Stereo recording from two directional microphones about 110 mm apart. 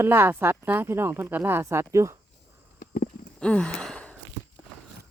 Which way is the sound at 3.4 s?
10° left (ahead or behind).